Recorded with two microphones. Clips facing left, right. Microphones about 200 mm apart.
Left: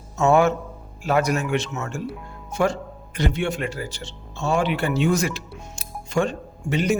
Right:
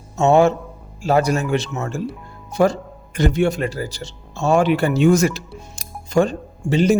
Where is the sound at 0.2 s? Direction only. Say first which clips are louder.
Right 3 dB; 25° right (ahead or behind).